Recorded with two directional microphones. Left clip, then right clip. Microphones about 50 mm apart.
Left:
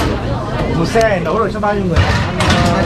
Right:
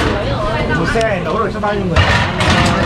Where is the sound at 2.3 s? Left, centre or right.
Centre.